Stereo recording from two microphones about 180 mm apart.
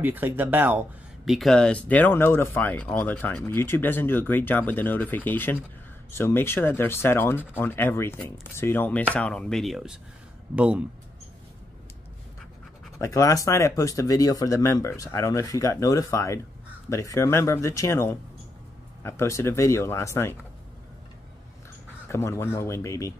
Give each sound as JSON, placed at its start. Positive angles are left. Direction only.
{"t": 0.0, "sound": "speech", "side_deg": -10}
{"t": 13.0, "sound": "speech", "side_deg": 20}
{"t": 22.0, "sound": "speech", "side_deg": 15}